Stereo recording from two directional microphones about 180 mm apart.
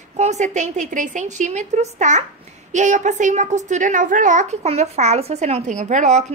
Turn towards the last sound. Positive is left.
turn(degrees=-40)  # may be behind; listen again after turning